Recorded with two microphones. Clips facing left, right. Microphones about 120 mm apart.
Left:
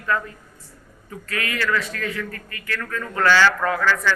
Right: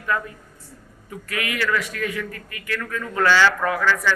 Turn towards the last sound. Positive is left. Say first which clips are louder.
# even
turn(degrees=-15)  # may be behind; listen again after turning